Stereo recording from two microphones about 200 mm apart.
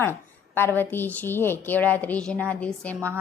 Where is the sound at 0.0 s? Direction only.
10° left (ahead or behind).